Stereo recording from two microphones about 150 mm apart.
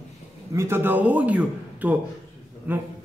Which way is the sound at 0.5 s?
15° right (ahead or behind).